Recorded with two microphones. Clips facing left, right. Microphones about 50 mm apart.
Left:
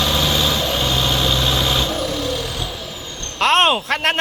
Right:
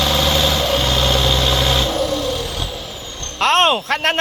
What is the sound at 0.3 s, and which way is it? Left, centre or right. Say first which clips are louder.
Vehicle: right 2 dB; centre.